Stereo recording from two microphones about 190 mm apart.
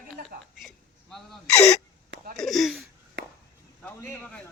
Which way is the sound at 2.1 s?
50° right (ahead or behind).